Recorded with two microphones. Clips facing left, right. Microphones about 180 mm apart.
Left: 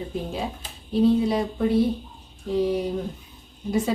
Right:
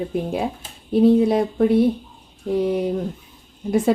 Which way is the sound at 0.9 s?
50° right (ahead or behind).